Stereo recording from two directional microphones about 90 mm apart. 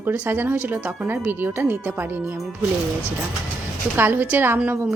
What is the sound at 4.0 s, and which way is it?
Speech, 20° right (ahead or behind).